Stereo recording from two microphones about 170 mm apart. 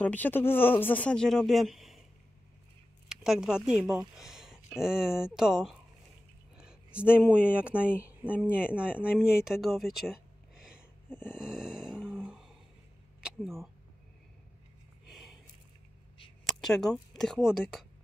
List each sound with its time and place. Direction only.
0.0 s speech: 10° left (ahead or behind)
3.1 s speech: 5° right (ahead or behind)
11.1 s dog: 10° left (ahead or behind)
11.3 s grunt: 5° right (ahead or behind)
13.2 s a sound: 5° right (ahead or behind)
16.4 s a sound: centre (ahead or behind)
17.5 s speech: 5° right (ahead or behind)